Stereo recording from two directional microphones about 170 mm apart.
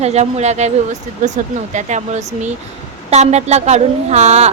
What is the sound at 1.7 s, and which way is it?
Speech, 45° right (ahead or behind).